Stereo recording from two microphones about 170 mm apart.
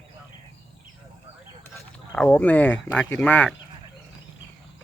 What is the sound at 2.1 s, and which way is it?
Speech, 5° left (ahead or behind).